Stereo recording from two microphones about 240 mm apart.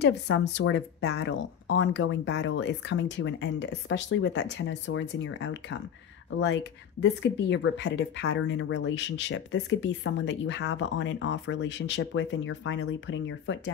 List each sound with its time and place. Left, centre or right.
0.0 s speech: left